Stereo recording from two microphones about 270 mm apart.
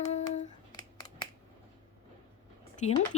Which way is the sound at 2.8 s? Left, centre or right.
Left.